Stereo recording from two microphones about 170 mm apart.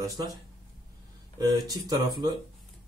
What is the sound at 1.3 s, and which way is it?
Speech, 25° right (ahead or behind).